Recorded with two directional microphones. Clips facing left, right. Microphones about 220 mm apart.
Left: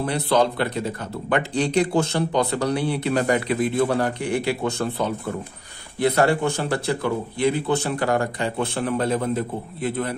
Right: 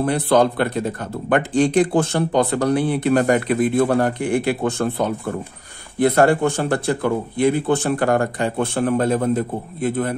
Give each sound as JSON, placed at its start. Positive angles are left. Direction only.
{"t": 0.0, "sound": "a man's voice", "side_deg": -50}